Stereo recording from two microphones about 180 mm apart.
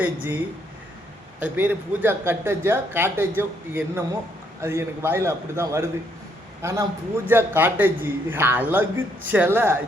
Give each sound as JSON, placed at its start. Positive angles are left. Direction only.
{"t": 0.0, "sound": "speech", "side_deg": -10}
{"t": 1.4, "sound": "a man's voice", "side_deg": -10}